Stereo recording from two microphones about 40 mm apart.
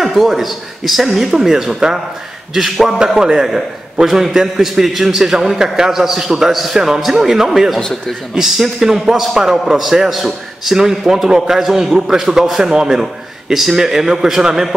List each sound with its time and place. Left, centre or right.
0.0 s a man's voice: centre